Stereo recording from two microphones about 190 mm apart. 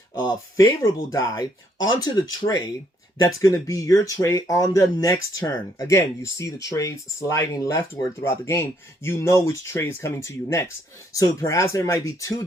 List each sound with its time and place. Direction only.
0.3 s speech: 20° left (ahead or behind)
1.9 s speech: 20° left (ahead or behind)